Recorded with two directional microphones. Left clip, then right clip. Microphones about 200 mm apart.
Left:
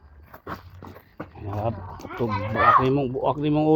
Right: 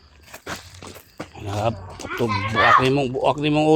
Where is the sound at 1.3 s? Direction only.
30° right (ahead or behind).